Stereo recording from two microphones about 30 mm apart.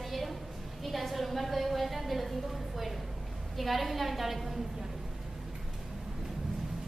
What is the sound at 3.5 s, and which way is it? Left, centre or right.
A woman's voice, centre.